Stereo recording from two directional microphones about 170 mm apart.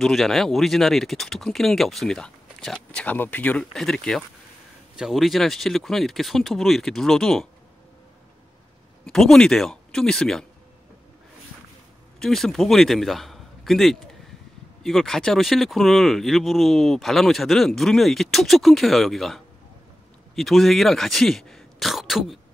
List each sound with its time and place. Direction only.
0.0 s speech: centre (ahead or behind)
9.0 s speech: centre (ahead or behind)
12.2 s a man's voice: centre (ahead or behind)